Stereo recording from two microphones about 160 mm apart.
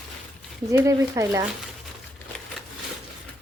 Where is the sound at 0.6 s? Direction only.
20° right (ahead or behind).